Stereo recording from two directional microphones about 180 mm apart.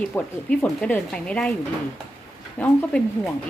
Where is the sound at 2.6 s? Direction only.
5° left (ahead or behind).